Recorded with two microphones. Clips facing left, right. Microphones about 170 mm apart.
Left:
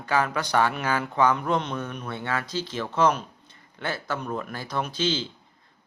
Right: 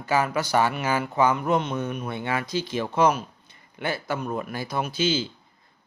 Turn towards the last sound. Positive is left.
turn(degrees=-10)  # may be behind; listen again after turning